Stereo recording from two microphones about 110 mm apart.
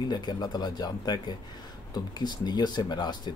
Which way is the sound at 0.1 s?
40° left (ahead or behind).